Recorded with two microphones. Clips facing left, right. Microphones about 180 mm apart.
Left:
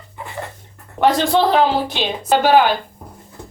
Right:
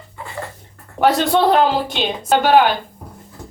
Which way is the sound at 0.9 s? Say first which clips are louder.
Even; 5° right (ahead or behind).